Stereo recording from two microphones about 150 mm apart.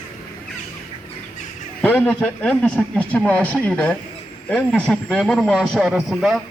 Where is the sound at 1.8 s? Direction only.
10° left (ahead or behind).